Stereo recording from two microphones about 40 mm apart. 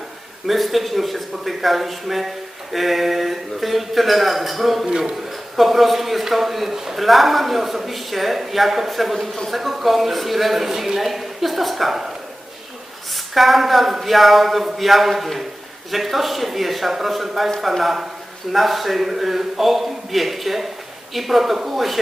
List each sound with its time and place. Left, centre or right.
0.4 s a man's voice: centre
4.9 s a man's voice: centre
5.1 s a man's voice: centre
13.1 s a man's voice: centre